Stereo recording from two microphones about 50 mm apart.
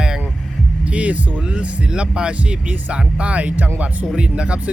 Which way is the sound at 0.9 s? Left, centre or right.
Right.